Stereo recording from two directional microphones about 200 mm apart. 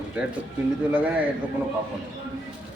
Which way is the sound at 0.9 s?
5° right (ahead or behind).